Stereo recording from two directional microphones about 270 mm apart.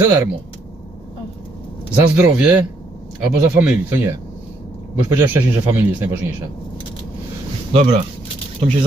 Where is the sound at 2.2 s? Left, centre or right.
Centre.